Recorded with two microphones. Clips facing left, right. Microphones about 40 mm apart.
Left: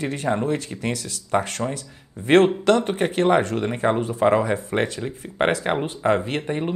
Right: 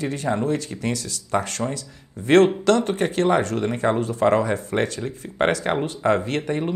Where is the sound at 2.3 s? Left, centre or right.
Left.